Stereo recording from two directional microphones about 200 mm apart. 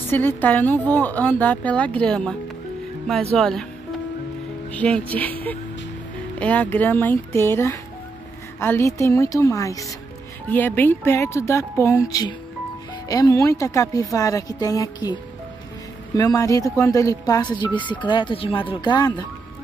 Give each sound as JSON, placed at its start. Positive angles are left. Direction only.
{"t": 0.1, "sound": "speech", "side_deg": 10}
{"t": 3.3, "sound": "speech", "side_deg": 0}
{"t": 4.6, "sound": "speech", "side_deg": 5}
{"t": 16.2, "sound": "speech", "side_deg": 15}